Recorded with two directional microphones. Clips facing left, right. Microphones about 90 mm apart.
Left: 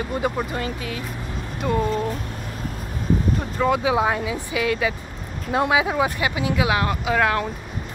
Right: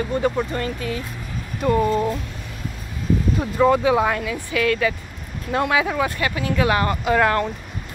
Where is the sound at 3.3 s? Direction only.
5° right (ahead or behind).